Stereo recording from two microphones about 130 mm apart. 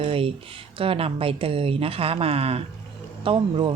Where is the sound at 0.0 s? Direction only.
45° right (ahead or behind).